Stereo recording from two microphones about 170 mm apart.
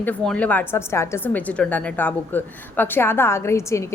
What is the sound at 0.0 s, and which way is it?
Speech, 5° left (ahead or behind).